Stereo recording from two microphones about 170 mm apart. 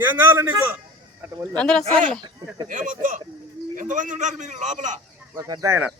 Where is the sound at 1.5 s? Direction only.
5° left (ahead or behind).